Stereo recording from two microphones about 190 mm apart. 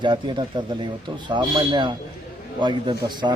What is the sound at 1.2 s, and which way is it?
A man's voice, 25° right (ahead or behind).